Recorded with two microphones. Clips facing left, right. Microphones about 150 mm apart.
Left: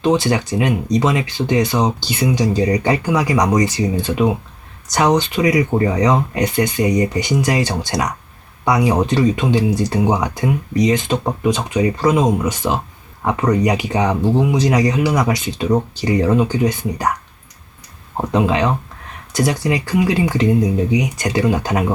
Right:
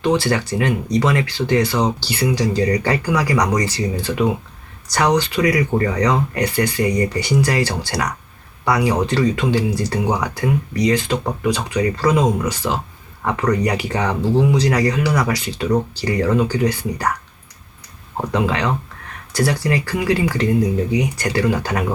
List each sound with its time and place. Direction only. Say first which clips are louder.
0.0 s speech: left 2 dB; 20° left (ahead or behind)
18.2 s speech: left 3 dB; 20° left (ahead or behind)